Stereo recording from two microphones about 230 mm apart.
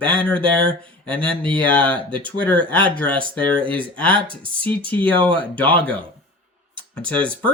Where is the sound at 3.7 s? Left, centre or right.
Centre.